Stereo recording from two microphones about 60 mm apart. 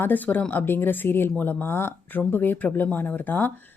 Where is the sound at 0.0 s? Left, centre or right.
Left.